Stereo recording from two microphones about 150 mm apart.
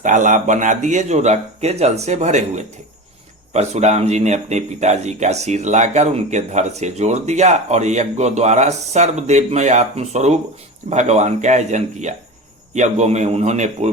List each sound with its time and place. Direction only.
0.0 s speech: 60° right (ahead or behind)